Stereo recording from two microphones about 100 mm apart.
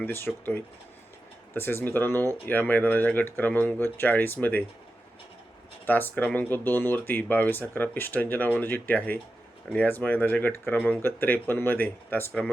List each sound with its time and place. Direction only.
0.0 s speech: 20° left (ahead or behind)
5.8 s speech: 20° left (ahead or behind)